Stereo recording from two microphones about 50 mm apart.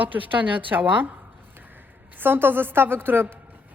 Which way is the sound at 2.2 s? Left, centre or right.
Right.